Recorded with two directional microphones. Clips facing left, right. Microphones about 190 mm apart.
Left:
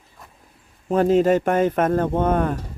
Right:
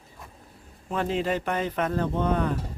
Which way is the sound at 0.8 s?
40° left (ahead or behind).